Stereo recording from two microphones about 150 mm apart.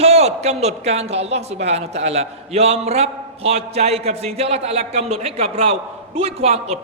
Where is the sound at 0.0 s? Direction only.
45° right (ahead or behind).